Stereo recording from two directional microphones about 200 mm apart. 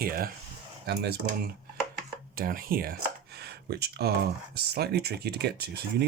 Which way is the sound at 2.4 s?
45° right (ahead or behind).